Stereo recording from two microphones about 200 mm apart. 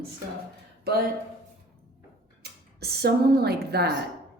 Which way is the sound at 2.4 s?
55° right (ahead or behind).